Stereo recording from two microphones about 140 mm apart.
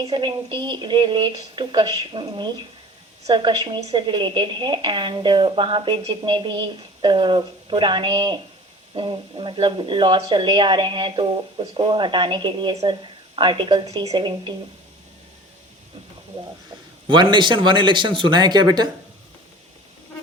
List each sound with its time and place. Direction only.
0.0 s speech: 35° right (ahead or behind)
17.1 s speech: 35° right (ahead or behind)